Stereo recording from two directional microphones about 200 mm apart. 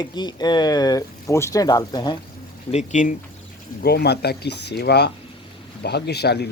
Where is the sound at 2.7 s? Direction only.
40° left (ahead or behind).